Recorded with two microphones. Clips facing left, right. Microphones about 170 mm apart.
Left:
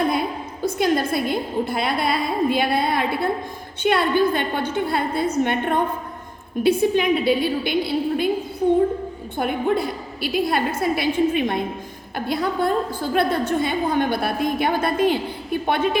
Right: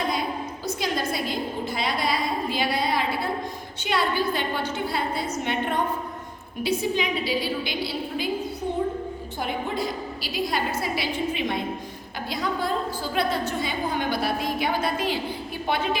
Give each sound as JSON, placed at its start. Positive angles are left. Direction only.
{"t": 0.6, "sound": "a woman's voice", "side_deg": 55}
{"t": 9.4, "sound": "a woman's voice", "side_deg": 55}